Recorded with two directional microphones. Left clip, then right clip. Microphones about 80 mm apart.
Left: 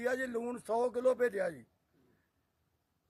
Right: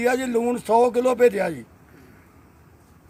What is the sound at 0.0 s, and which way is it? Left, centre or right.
Speech, left.